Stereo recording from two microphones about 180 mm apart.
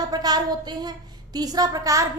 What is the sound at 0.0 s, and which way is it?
A woman's voice, 20° right (ahead or behind).